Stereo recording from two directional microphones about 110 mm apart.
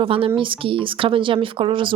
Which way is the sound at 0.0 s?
55° right (ahead or behind).